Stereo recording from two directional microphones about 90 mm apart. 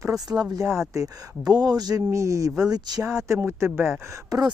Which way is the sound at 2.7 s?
50° right (ahead or behind).